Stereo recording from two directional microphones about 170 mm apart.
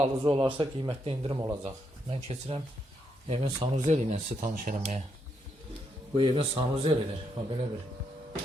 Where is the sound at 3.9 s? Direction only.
40° right (ahead or behind).